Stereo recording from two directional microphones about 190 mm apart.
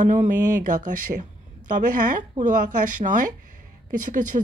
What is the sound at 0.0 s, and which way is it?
A woman's voice, 40° right (ahead or behind).